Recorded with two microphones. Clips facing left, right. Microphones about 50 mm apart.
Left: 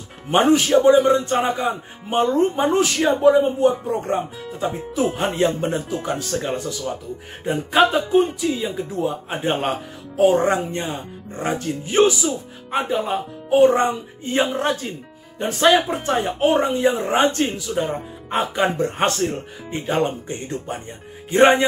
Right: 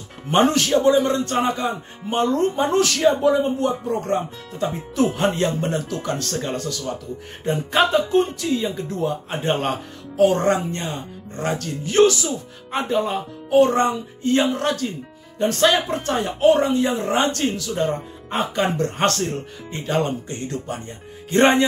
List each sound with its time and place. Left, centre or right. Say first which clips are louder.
0.3 s speech: left 2 dB; centre
7.4 s speech: left 2 dB; centre